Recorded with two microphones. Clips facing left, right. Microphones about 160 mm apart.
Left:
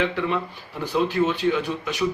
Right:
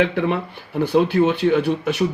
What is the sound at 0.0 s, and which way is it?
Speech, 55° right (ahead or behind).